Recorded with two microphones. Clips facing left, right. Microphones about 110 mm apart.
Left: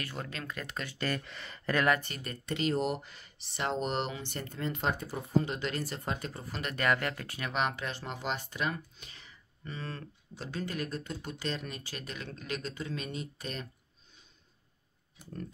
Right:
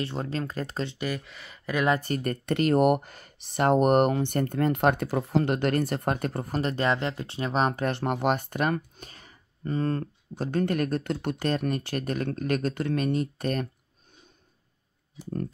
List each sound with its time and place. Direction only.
0.0 s speech: 30° right (ahead or behind)
0.9 s speech: 10° right (ahead or behind)
2.0 s speech: 45° right (ahead or behind)
6.6 s speech: 30° right (ahead or behind)
7.9 s speech: 55° right (ahead or behind)